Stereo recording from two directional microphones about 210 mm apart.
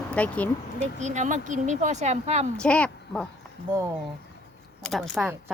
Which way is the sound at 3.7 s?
15° right (ahead or behind).